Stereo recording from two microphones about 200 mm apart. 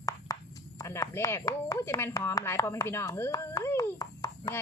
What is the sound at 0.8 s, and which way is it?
A woman's voice, 15° left (ahead or behind).